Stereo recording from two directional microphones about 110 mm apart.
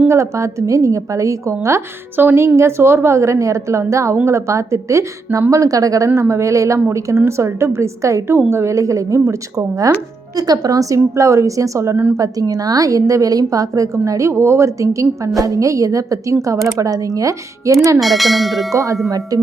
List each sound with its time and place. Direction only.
0.1 s a woman's voice: 25° right (ahead or behind)
12.1 s a woman's voice: 30° right (ahead or behind)
18.0 s speech: centre (ahead or behind)
18.7 s a woman's voice: 30° right (ahead or behind)